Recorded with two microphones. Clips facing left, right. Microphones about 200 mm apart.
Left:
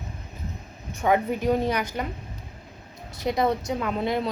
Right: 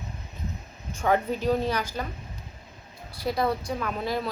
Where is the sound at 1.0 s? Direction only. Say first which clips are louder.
Left 2 dB; 15° left (ahead or behind).